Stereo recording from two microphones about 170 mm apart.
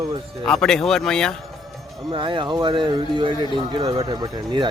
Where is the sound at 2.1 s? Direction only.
30° right (ahead or behind).